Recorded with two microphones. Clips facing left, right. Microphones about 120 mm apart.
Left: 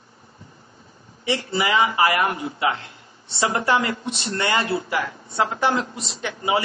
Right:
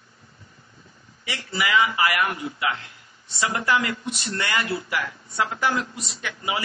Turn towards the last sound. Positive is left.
turn(degrees=30)  # may be behind; listen again after turning